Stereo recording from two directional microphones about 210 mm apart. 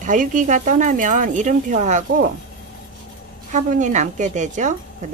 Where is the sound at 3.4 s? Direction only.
35° right (ahead or behind).